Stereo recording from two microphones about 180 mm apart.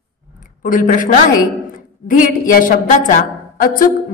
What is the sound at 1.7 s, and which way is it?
A woman's voice, 50° left (ahead or behind).